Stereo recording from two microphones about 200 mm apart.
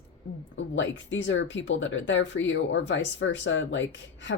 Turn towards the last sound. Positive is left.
turn(degrees=70)  # may be behind; listen again after turning